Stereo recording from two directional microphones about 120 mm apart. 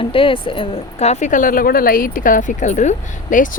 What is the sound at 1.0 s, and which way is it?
A woman's voice, 70° left (ahead or behind).